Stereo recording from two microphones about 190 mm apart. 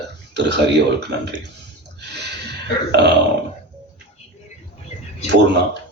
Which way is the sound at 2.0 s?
60° right (ahead or behind).